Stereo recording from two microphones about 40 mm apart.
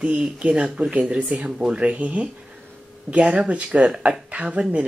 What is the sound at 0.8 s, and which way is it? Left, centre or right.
Speech, right.